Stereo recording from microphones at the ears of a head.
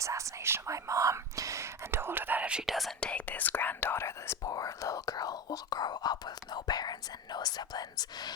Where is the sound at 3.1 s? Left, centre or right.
Left.